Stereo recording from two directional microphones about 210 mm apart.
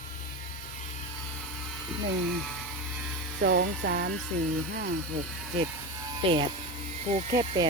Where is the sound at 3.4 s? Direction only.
55° right (ahead or behind).